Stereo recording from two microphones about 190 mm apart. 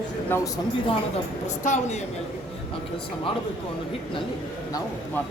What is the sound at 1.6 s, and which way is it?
Speech, 40° left (ahead or behind).